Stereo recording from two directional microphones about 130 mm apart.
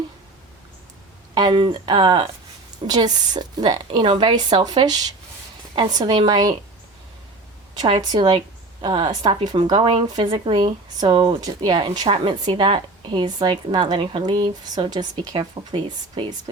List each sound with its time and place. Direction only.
1.4 s speech: 35° right (ahead or behind)
7.8 s speech: 35° right (ahead or behind)
10.1 s speech: 30° right (ahead or behind)